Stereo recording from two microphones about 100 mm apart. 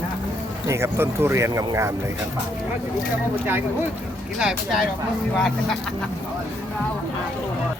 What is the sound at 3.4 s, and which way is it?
Speech, 20° right (ahead or behind).